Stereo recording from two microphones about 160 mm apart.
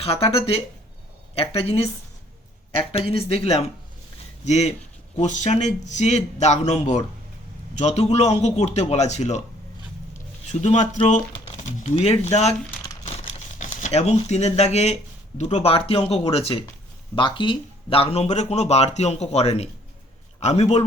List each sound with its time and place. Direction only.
0.0 s speech: 40° left (ahead or behind)
2.9 s speech: 35° left (ahead or behind)
10.5 s speech: 45° left (ahead or behind)
13.1 s crumpling: 45° left (ahead or behind)
15.4 s speech: 40° left (ahead or behind)